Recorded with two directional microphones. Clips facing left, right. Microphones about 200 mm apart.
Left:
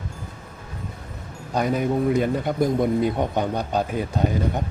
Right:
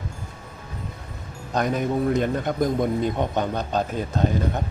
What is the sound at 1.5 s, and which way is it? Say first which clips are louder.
A man's voice: left 1 dB; 10° left (ahead or behind).